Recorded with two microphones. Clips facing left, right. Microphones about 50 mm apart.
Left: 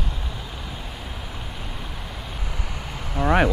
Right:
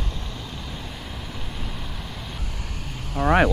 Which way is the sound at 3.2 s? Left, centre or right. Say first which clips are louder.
Right 1 dB; left.